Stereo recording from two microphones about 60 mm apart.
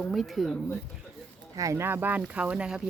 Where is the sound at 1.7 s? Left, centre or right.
Right; by 2.8 s centre.